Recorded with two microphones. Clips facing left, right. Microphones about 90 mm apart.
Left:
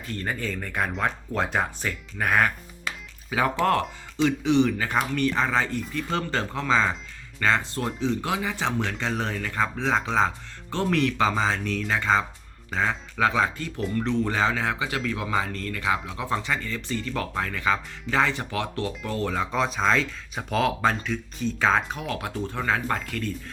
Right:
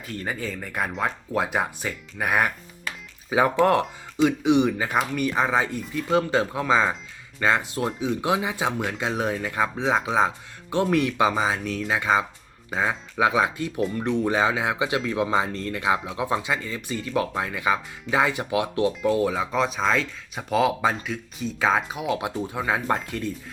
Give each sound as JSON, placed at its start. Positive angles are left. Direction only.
{"t": 0.1, "sound": "speech", "side_deg": -10}